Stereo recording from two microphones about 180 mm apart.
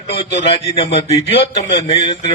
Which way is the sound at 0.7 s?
35° left (ahead or behind).